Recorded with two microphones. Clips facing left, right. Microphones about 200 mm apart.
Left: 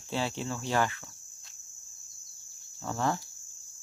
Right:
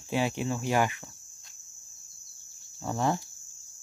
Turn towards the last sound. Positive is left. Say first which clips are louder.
# right 2 dB
turn(degrees=-15)  # may be behind; listen again after turning